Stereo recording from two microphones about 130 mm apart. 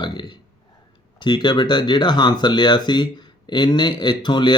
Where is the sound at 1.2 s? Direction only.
35° left (ahead or behind).